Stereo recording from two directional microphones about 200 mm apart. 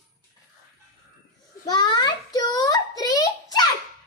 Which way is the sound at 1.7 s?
20° left (ahead or behind).